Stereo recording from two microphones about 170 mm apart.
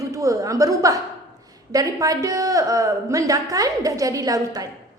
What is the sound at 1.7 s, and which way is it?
Speech, 20° right (ahead or behind).